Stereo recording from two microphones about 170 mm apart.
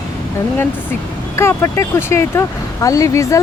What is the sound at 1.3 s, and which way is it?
Speech, 15° left (ahead or behind).